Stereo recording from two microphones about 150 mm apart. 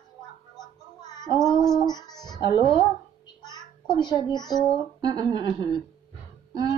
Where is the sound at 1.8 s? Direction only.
25° left (ahead or behind).